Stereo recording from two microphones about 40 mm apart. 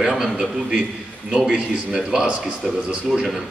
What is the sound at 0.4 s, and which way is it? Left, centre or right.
A man's voice, centre.